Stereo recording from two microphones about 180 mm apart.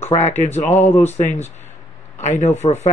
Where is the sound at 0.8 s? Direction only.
15° left (ahead or behind).